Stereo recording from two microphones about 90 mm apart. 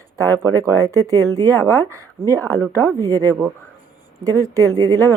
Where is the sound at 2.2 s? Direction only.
40° right (ahead or behind).